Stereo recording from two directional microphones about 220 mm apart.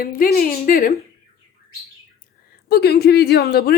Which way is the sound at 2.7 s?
45° left (ahead or behind).